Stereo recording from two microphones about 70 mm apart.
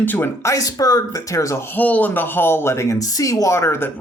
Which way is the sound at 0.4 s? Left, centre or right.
Left.